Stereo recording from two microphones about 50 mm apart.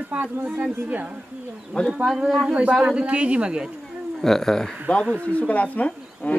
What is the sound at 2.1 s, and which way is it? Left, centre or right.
Speech, centre.